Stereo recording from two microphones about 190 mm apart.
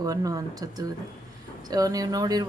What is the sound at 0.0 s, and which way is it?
A woman's voice, 20° right (ahead or behind).